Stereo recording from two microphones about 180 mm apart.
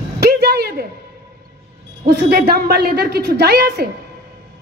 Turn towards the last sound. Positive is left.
turn(degrees=-60)  # may be behind; listen again after turning